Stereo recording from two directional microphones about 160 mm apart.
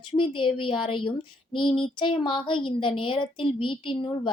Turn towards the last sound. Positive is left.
turn(degrees=30)  # may be behind; listen again after turning